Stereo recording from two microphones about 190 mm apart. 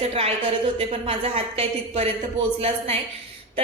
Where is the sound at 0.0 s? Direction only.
30° right (ahead or behind).